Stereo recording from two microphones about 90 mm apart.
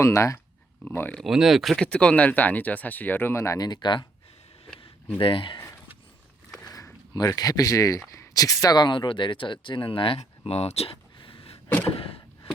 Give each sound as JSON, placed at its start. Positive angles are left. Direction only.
{"t": 0.0, "sound": "speech", "side_deg": 35}
{"t": 0.9, "sound": "speech", "side_deg": 20}
{"t": 1.2, "sound": "speech", "side_deg": -5}
{"t": 1.8, "sound": "speech", "side_deg": 10}
{"t": 3.6, "sound": "speech", "side_deg": 55}
{"t": 5.2, "sound": "speech", "side_deg": 70}
{"t": 5.5, "sound": "a sound", "side_deg": 30}
{"t": 7.1, "sound": "speech", "side_deg": 45}